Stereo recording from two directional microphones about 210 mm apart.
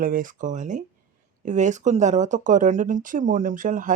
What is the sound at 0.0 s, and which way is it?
Speech, 40° right (ahead or behind).